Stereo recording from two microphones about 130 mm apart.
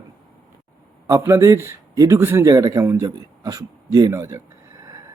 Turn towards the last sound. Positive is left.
turn(degrees=-25)  # may be behind; listen again after turning